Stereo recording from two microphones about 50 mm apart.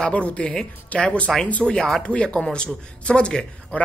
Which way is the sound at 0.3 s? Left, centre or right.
Left.